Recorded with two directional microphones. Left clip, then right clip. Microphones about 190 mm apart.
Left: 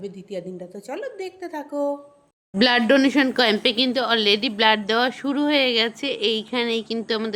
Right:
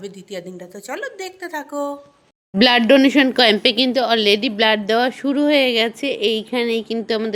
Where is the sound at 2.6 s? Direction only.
30° right (ahead or behind).